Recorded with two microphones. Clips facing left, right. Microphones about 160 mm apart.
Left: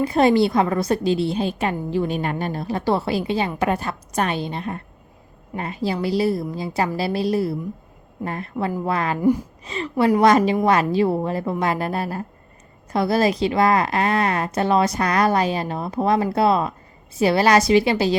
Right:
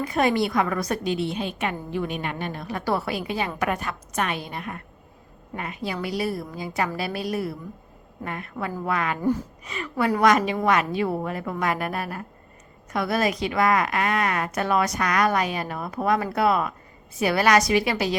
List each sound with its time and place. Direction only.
0.0 s a woman's voice: 30° left (ahead or behind)